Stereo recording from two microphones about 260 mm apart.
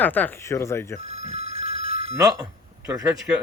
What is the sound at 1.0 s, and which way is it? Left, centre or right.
Telephone bell ringing, right.